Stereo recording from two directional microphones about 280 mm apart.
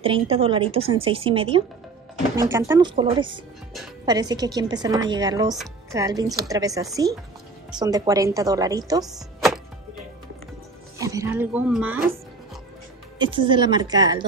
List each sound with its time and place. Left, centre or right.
0.0 s a woman's voice: right
11.0 s speech: centre
13.2 s speech: centre